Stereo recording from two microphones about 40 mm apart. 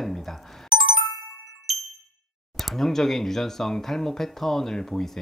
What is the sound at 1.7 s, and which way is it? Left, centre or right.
Ding, centre.